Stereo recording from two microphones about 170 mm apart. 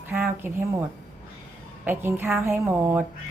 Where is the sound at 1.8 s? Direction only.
10° right (ahead or behind).